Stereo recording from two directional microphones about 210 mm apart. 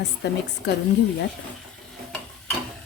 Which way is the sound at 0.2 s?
55° left (ahead or behind).